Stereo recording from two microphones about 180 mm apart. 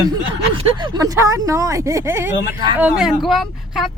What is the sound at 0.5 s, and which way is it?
Speech, 30° right (ahead or behind).